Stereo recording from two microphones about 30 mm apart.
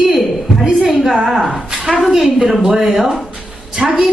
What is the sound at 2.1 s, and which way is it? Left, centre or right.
Speech, centre.